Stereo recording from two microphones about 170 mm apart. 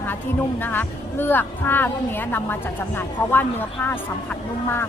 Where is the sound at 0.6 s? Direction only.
10° left (ahead or behind).